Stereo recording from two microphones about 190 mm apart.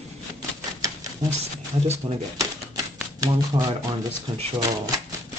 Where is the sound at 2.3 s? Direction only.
15° right (ahead or behind).